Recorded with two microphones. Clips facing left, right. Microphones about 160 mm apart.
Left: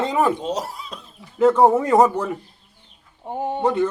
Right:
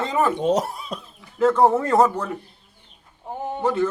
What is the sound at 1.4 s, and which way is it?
Speech, 10° left (ahead or behind).